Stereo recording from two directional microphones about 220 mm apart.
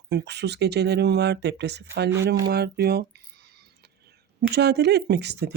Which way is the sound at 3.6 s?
50° right (ahead or behind).